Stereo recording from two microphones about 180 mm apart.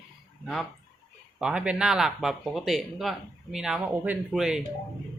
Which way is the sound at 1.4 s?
5° right (ahead or behind).